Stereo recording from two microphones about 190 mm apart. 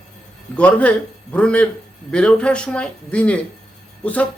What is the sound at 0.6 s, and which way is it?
Speech, 5° left (ahead or behind).